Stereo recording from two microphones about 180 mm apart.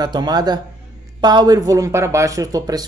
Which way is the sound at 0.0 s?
25° right (ahead or behind).